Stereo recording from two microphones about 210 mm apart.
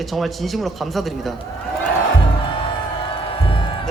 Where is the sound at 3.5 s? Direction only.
25° left (ahead or behind).